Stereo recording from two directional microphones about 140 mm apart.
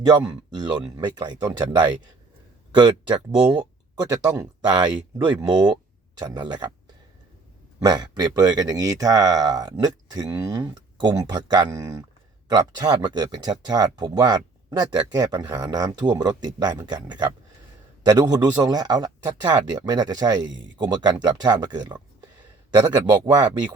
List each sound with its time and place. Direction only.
0.5 s speech: 30° right (ahead or behind)
7.8 s speech: 30° right (ahead or behind)
16.0 s speech: 10° right (ahead or behind)
16.4 s speech: 30° right (ahead or behind)